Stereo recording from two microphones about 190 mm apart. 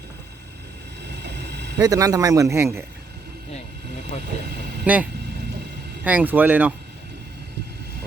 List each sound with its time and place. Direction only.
1.0 s vehicle: 60° right (ahead or behind)
1.8 s speech: 20° right (ahead or behind)
4.9 s speech: 5° right (ahead or behind)
6.1 s speech: 10° right (ahead or behind)